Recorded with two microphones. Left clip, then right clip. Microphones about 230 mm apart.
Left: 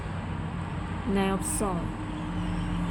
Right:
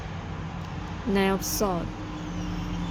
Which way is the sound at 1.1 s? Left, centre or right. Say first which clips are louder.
Right 4 dB; right.